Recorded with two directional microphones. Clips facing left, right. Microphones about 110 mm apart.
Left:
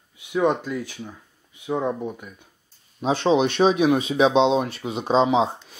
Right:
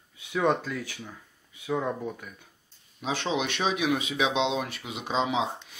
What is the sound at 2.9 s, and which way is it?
Speech, 35° left (ahead or behind).